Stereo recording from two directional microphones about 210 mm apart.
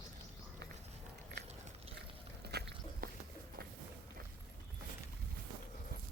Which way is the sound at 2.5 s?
50° right (ahead or behind).